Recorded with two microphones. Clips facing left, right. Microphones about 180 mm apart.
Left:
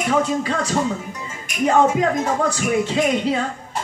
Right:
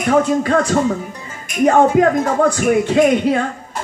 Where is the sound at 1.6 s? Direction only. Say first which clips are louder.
Right 5 dB; 55° right (ahead or behind).